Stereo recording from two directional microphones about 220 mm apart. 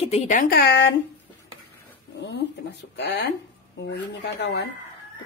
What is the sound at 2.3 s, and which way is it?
Speech, 50° left (ahead or behind).